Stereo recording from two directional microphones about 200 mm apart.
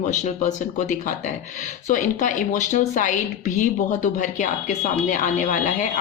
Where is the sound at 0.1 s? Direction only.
40° left (ahead or behind).